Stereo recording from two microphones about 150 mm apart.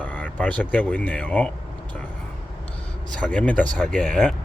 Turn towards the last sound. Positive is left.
turn(degrees=5)  # may be behind; listen again after turning